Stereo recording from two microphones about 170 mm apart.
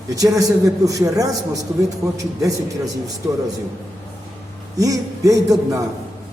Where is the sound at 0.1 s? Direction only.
20° right (ahead or behind).